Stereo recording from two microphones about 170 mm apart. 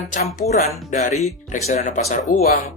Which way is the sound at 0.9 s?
45° left (ahead or behind).